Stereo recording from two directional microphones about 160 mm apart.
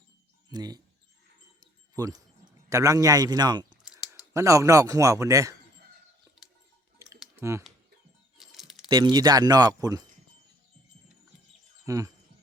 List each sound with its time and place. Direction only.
0.5 s a man's voice: 25° right (ahead or behind)
2.0 s a man's voice: 25° right (ahead or behind)
7.3 s speech: 20° right (ahead or behind)
8.4 s typing: centre (ahead or behind)
8.9 s a man's voice: 25° right (ahead or behind)
11.9 s a man's voice: 20° right (ahead or behind)